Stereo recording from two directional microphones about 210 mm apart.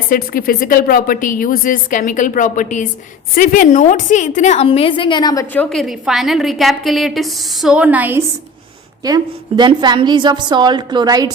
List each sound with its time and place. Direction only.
0.1 s a woman's voice: 40° left (ahead or behind); by 5.6 s 15° left (ahead or behind)
5.6 s a woman's voice: centre (ahead or behind)
9.0 s a woman's voice: 20° right (ahead or behind)